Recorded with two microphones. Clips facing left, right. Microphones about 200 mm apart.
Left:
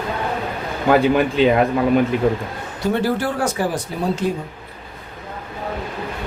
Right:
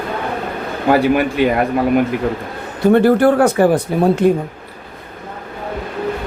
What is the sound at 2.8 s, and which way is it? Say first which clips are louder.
Speech: right 9 dB; 55° right (ahead or behind).